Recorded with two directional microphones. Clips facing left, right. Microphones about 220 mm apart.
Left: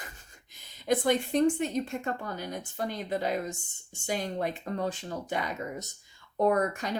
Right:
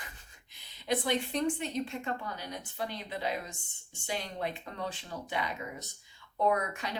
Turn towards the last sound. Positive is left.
turn(degrees=45)  # may be behind; listen again after turning